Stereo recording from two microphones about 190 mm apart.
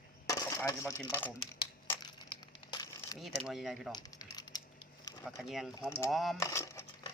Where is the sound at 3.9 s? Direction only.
20° left (ahead or behind).